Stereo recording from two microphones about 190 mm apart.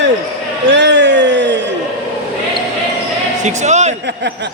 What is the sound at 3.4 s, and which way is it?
Music, 35° right (ahead or behind).